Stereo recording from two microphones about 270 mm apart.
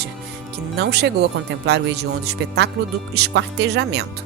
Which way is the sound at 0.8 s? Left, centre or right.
Right.